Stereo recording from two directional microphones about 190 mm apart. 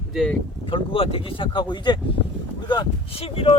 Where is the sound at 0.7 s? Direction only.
30° left (ahead or behind).